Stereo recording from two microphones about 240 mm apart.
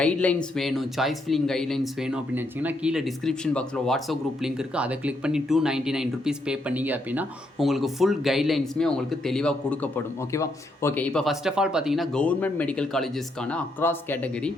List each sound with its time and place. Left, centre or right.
0.0 s speech: centre